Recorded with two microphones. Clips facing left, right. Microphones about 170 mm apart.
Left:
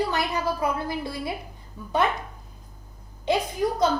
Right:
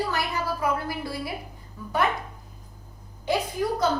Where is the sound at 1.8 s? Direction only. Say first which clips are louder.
Right 1 dB; 20° left (ahead or behind).